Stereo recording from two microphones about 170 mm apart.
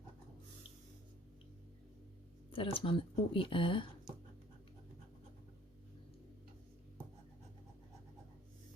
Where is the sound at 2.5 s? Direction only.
30° left (ahead or behind).